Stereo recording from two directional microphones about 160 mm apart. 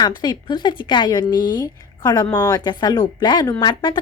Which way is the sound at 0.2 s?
25° left (ahead or behind).